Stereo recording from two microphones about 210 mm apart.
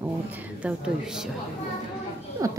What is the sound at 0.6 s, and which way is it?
Speech, 5° right (ahead or behind).